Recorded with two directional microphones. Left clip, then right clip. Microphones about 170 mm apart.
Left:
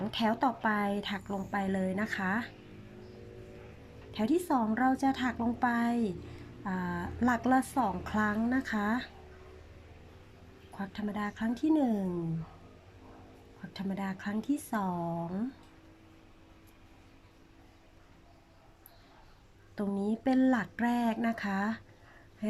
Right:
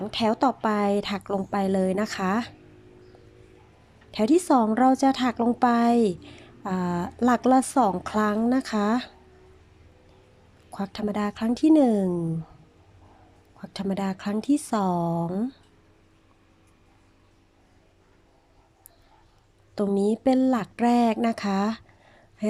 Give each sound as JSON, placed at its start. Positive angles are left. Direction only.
{"t": 0.0, "sound": "a woman's voice", "side_deg": -20}
{"t": 4.1, "sound": "a woman's voice", "side_deg": -25}
{"t": 10.7, "sound": "a woman's voice", "side_deg": -25}
{"t": 13.6, "sound": "a woman's voice", "side_deg": -25}
{"t": 19.7, "sound": "a woman's voice", "side_deg": -25}